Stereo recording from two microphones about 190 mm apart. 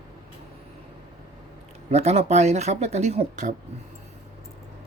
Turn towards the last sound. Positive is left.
turn(degrees=-35)  # may be behind; listen again after turning